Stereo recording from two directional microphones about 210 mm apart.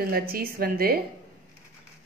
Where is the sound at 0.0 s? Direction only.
45° right (ahead or behind).